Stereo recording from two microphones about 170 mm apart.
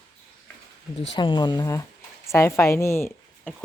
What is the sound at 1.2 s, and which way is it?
Speech, 25° left (ahead or behind).